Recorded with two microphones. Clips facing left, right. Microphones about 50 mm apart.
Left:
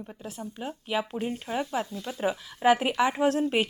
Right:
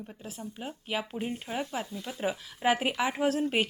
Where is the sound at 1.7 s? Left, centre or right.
Centre.